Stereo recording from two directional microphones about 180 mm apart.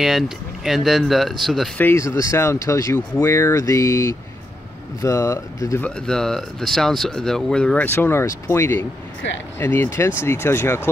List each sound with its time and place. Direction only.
0.7 s speech: centre (ahead or behind)
1.8 s speech: 15° left (ahead or behind)
5.9 s speech: 5° left (ahead or behind)